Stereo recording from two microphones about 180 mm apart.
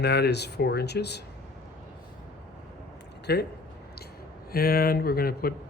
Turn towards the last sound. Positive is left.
turn(degrees=55)  # may be behind; listen again after turning